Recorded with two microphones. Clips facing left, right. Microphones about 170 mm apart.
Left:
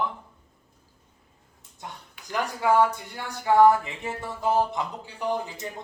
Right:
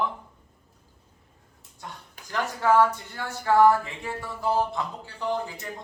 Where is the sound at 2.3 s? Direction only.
10° left (ahead or behind).